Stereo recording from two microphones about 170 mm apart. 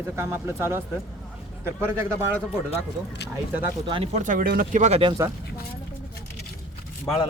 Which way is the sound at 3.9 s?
30° right (ahead or behind).